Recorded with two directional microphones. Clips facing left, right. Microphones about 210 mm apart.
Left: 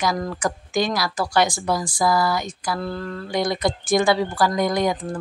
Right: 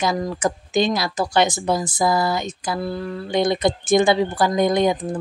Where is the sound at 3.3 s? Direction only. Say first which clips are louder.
Right 3 dB; 25° right (ahead or behind).